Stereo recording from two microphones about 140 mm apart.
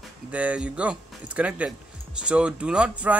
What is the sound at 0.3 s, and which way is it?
Speech, 10° right (ahead or behind).